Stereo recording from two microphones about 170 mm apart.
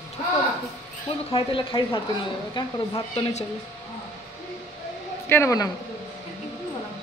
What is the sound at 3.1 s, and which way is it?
Speech, 40° left (ahead or behind).